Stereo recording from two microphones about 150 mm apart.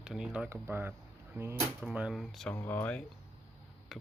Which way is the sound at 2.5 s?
15° left (ahead or behind).